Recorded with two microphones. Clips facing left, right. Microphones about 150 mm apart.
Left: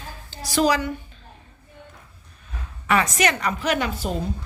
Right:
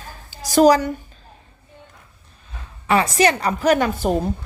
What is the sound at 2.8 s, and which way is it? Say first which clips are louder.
A woman's voice: right 4 dB; 30° right (ahead or behind).